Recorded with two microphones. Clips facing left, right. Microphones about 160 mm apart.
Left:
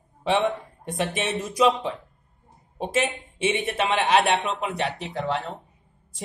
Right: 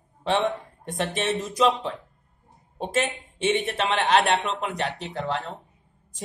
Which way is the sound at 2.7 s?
5° left (ahead or behind).